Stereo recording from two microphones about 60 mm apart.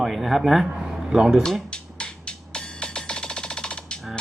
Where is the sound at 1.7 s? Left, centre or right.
Centre.